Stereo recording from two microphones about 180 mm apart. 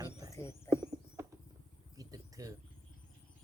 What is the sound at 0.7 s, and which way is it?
Horse, 20° right (ahead or behind).